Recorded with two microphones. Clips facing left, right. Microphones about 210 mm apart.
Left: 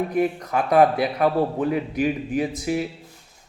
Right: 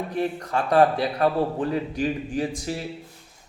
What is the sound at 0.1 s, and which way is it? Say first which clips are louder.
A man's voice: left 4 dB; 15° left (ahead or behind).